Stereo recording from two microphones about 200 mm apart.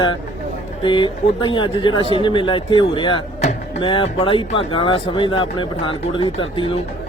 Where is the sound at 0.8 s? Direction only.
25° left (ahead or behind).